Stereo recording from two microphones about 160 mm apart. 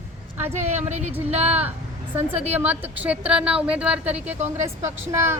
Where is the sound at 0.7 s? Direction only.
45° right (ahead or behind).